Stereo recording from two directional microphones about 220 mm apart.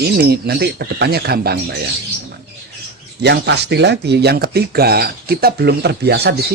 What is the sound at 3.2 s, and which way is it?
Speech, 50° right (ahead or behind).